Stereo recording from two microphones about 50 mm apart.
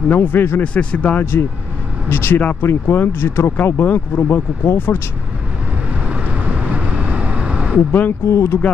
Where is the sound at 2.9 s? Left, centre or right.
Left.